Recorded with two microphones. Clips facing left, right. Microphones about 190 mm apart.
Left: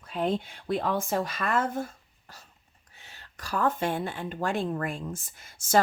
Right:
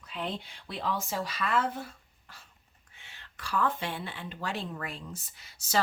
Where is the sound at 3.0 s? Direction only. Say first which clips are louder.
Even; 40° left (ahead or behind).